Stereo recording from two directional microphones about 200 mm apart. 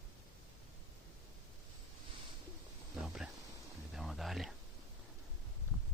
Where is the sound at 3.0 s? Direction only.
Centre (ahead or behind).